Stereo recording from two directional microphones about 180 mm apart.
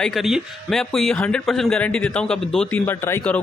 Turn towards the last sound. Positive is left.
turn(degrees=15)  # may be behind; listen again after turning